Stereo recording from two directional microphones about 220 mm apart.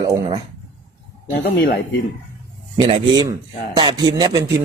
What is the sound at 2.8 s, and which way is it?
Speech, 25° right (ahead or behind).